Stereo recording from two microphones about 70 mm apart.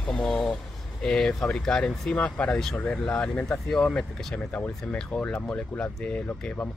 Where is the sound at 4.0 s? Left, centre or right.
Left.